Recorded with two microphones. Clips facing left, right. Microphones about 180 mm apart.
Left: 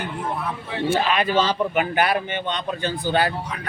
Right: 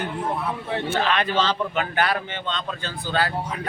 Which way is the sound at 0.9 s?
10° left (ahead or behind).